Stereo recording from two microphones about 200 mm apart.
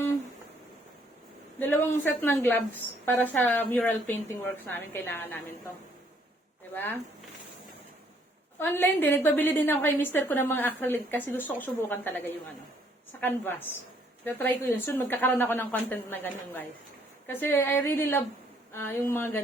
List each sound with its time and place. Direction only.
1.5 s a woman's voice: 10° left (ahead or behind)
6.7 s a woman's voice: 10° left (ahead or behind)
8.5 s a woman's voice: 10° left (ahead or behind)
13.1 s a woman's voice: 10° left (ahead or behind)